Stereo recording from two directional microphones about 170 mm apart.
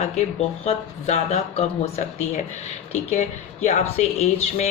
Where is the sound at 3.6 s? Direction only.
40° left (ahead or behind).